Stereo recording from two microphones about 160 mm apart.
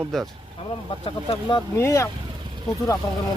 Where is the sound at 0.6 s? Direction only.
35° left (ahead or behind).